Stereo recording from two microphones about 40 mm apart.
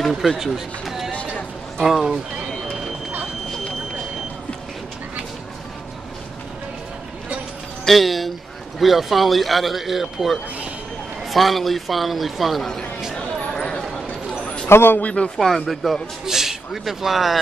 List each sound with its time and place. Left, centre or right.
0.3 s speech: centre
7.8 s a sound: centre
8.7 s a man's voice: centre
13.6 s clip-clop: centre
14.7 s a man's voice: left
15.0 s a man's voice: left
15.3 s a man's voice: centre
16.3 s speech: centre